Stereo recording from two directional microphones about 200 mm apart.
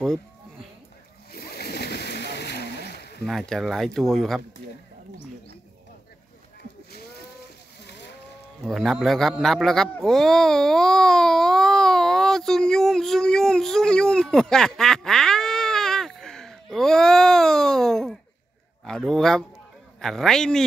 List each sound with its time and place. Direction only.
1.3 s splash: 50° left (ahead or behind)
3.3 s speech: centre (ahead or behind)
8.6 s speech: centre (ahead or behind)
9.4 s baby cry: centre (ahead or behind)
18.9 s a man's voice: centre (ahead or behind)